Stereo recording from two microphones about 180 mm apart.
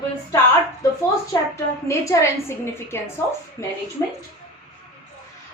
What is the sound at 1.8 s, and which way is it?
A woman's voice, 15° left (ahead or behind).